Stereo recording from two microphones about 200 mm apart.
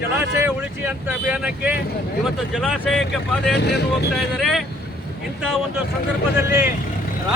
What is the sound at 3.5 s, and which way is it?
Speech, 55° left (ahead or behind).